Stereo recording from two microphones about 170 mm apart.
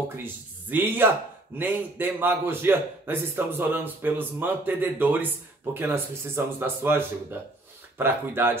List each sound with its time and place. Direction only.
0.1 s a man's voice: 10° right (ahead or behind)